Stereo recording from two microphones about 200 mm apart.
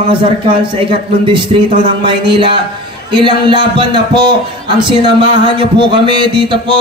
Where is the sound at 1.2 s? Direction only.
25° right (ahead or behind).